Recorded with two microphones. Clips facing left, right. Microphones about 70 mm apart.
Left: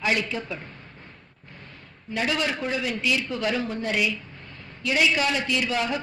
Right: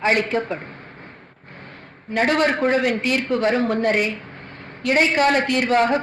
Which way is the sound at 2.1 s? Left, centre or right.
Right.